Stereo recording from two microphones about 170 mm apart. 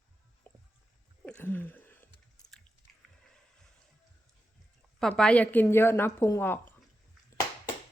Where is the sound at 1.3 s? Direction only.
10° left (ahead or behind).